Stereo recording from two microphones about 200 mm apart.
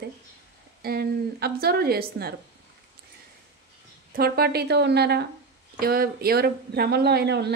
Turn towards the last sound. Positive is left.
turn(degrees=-55)  # may be behind; listen again after turning